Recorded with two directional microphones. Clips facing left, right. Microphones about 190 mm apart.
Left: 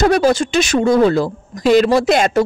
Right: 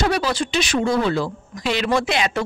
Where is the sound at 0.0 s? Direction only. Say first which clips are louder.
Left 8 dB; 45° left (ahead or behind).